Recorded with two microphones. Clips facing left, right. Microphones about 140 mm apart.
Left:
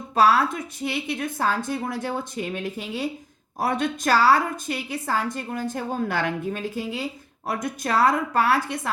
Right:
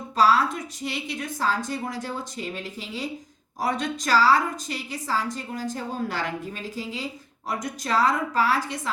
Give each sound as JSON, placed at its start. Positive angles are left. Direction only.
{"t": 0.2, "sound": "a woman's voice", "side_deg": 55}